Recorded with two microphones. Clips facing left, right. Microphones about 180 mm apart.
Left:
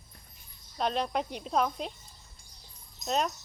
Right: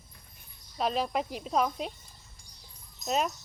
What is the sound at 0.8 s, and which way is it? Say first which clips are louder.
Speech: right 1 dB; 5° right (ahead or behind).